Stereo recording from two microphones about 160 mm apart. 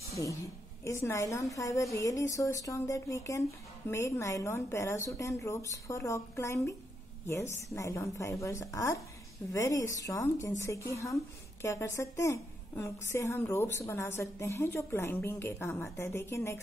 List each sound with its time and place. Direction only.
0.8 s speech: 20° left (ahead or behind)
7.7 s a woman's voice: 20° left (ahead or behind)